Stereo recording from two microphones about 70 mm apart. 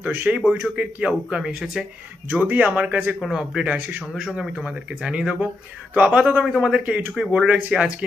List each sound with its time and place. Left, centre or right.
0.0 s speech: right
3.2 s speech: centre
4.1 s speech: centre
6.4 s speech: centre